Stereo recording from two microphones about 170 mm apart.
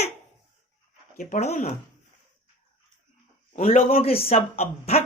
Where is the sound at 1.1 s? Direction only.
50° left (ahead or behind).